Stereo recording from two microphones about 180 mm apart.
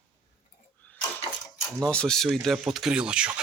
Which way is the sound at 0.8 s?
10° left (ahead or behind).